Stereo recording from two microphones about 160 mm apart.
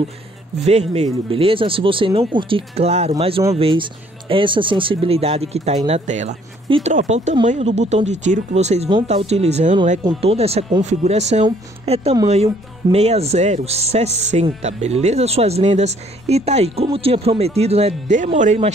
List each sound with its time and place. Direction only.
0.6 s speech: 45° right (ahead or behind)